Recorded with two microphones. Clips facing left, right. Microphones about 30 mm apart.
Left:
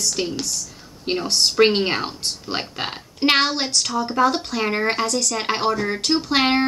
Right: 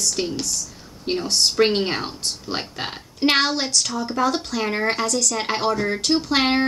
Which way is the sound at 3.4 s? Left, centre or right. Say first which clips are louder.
Even; left.